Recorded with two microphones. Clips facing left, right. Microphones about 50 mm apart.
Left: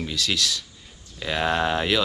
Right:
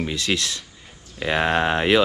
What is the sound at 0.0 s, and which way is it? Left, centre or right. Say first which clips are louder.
Speech: right 2 dB; right.